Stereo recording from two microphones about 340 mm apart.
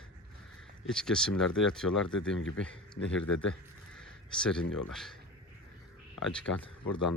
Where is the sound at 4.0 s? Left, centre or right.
Centre.